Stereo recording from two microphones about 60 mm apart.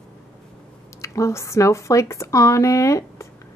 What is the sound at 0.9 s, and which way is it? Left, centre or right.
Speech, left.